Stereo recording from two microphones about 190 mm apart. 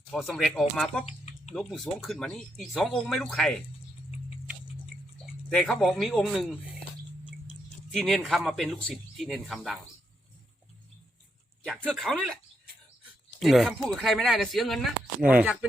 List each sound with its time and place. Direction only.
0.1 s speech: centre (ahead or behind)
1.0 s a sound: 35° left (ahead or behind)
1.5 s speech: centre (ahead or behind)
5.2 s speech: 5° left (ahead or behind)
7.9 s speech: 5° left (ahead or behind)
11.9 s speech: centre (ahead or behind)
13.4 s speech: centre (ahead or behind)